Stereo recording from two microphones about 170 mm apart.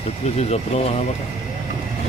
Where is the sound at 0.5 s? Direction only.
40° left (ahead or behind).